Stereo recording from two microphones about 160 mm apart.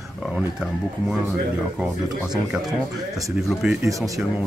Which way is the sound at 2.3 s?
5° right (ahead or behind).